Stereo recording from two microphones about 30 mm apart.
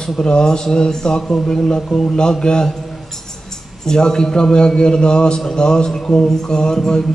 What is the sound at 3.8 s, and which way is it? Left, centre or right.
A man's voice, left.